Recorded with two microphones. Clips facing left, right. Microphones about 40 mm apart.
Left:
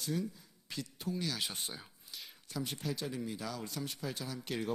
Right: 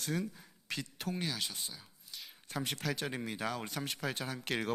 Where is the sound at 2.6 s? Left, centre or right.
Right.